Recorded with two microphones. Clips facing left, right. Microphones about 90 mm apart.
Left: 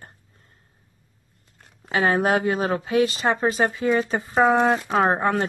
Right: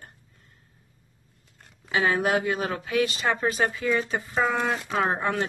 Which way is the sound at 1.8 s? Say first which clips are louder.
Left 3 dB; 40° left (ahead or behind).